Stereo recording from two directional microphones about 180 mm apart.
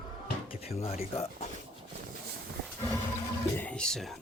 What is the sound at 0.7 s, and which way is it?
Speech, 35° left (ahead or behind).